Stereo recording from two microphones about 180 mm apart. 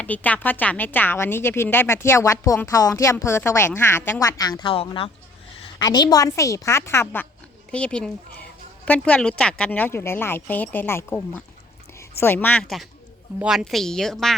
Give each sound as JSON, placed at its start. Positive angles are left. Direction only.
{"t": 0.0, "sound": "a woman's voice", "side_deg": 10}